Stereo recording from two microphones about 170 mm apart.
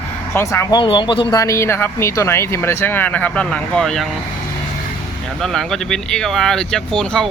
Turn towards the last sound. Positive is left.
turn(degrees=5)  # may be behind; listen again after turning